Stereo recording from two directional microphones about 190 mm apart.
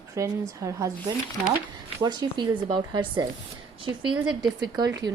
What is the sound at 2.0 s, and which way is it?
A woman's voice, 20° right (ahead or behind).